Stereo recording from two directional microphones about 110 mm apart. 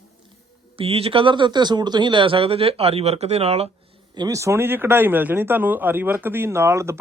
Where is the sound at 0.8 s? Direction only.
60° right (ahead or behind).